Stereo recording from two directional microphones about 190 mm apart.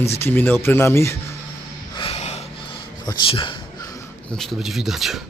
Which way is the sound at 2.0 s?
35° left (ahead or behind).